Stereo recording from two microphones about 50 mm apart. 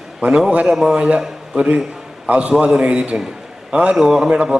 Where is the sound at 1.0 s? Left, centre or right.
Right.